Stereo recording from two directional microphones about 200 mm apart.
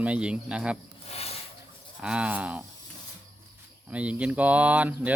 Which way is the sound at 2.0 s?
5° right (ahead or behind).